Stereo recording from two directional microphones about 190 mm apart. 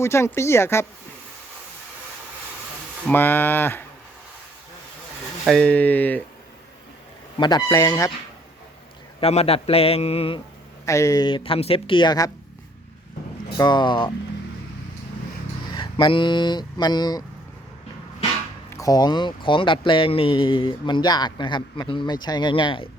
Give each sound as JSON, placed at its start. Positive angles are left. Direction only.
{"t": 0.0, "sound": "speech", "side_deg": 15}
{"t": 3.1, "sound": "speech", "side_deg": 10}
{"t": 5.5, "sound": "speech", "side_deg": 5}
{"t": 7.3, "sound": "speech", "side_deg": 25}
{"t": 9.2, "sound": "a man's voice", "side_deg": 30}
{"t": 10.8, "sound": "speech", "side_deg": 15}
{"t": 13.6, "sound": "speech", "side_deg": 25}
{"t": 15.7, "sound": "speech", "side_deg": 25}
{"t": 18.7, "sound": "speech", "side_deg": 20}